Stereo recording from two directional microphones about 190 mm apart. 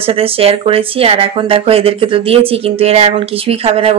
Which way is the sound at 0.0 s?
30° right (ahead or behind).